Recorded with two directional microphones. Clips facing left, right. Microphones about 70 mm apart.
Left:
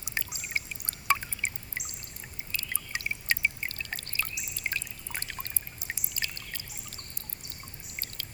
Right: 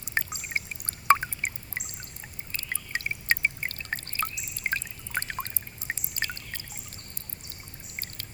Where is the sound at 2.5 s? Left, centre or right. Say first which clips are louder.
Right 3 dB; right.